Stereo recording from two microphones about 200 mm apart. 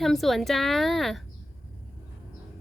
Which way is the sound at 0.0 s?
Centre (ahead or behind).